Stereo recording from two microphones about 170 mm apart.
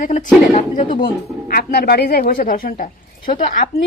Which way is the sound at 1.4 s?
60° left (ahead or behind).